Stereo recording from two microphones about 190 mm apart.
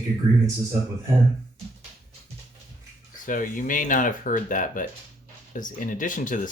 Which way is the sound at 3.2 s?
45° left (ahead or behind).